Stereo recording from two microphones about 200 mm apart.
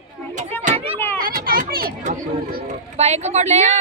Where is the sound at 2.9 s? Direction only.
35° right (ahead or behind).